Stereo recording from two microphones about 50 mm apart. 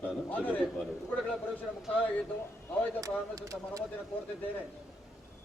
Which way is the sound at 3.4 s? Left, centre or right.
Right.